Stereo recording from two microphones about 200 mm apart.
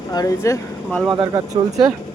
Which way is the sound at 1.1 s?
20° right (ahead or behind).